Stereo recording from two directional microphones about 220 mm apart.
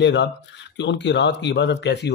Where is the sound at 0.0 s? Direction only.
55° left (ahead or behind).